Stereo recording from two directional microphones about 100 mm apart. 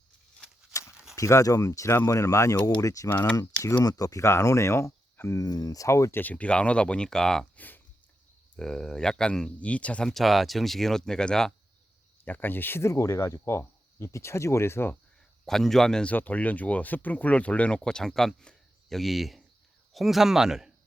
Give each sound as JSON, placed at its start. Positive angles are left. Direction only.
{"t": 0.7, "sound": "a sound", "side_deg": 35}
{"t": 1.1, "sound": "speech", "side_deg": 30}
{"t": 5.5, "sound": "speech", "side_deg": 40}
{"t": 12.2, "sound": "speech", "side_deg": 20}
{"t": 15.4, "sound": "speech", "side_deg": 5}